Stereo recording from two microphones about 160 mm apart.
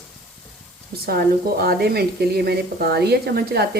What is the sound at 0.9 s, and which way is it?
Speech, 75° right (ahead or behind).